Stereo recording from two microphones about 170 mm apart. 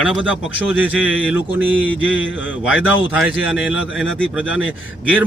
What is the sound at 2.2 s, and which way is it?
Speech, 90° left.